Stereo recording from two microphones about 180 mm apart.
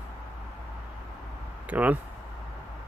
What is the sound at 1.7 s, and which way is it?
Speech, 10° right (ahead or behind).